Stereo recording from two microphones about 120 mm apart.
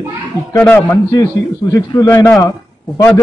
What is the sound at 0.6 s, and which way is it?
Speech, 15° left (ahead or behind).